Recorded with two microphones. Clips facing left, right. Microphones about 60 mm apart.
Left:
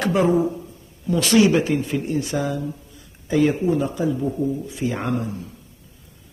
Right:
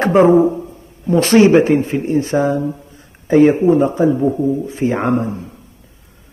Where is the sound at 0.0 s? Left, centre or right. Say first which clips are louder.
Right 9 dB; right.